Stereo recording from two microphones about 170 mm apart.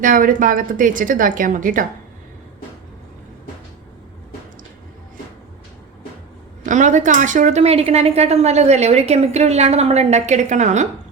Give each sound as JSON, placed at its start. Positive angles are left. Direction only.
{"t": 0.0, "sound": "speech", "side_deg": -50}
{"t": 6.6, "sound": "speech", "side_deg": -45}